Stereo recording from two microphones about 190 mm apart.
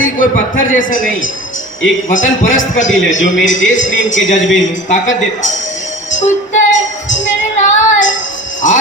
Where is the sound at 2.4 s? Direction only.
90° left.